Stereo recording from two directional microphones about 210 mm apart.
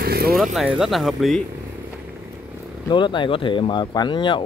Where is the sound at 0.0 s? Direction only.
45° right (ahead or behind).